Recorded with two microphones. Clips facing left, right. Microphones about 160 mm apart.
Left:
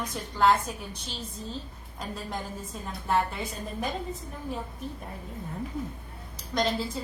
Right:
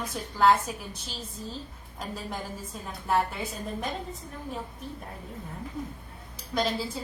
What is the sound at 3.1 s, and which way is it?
Speech, centre (ahead or behind).